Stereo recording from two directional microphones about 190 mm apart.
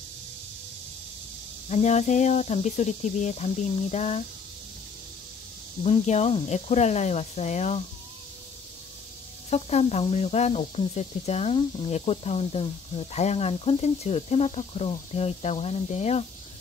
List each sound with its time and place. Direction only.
1.7 s speech: 35° left (ahead or behind)
5.9 s speech: 35° left (ahead or behind)
9.5 s speech: 35° left (ahead or behind)